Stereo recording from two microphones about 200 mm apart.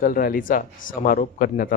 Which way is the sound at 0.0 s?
45° left (ahead or behind).